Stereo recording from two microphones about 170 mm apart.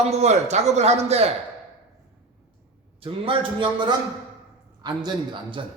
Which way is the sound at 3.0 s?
30° right (ahead or behind).